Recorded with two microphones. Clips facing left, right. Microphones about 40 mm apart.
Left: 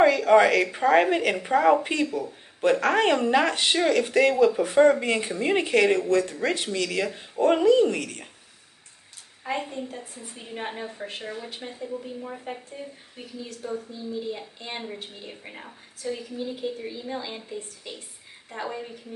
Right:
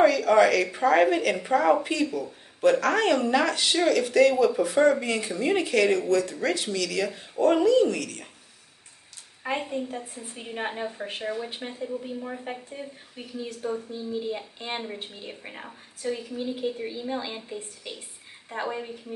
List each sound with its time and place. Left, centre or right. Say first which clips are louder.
0.0 s speech: left 1 dB; left
9.7 s a woman's voice: right 3 dB; right
15.2 s a woman's voice: right 1 dB; centre